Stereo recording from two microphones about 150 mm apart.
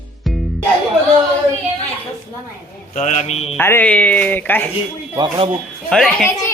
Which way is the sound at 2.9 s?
55° left (ahead or behind).